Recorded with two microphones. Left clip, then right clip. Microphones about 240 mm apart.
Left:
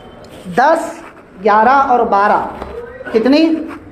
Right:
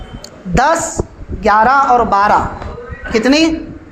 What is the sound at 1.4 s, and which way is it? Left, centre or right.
A woman's voice, right.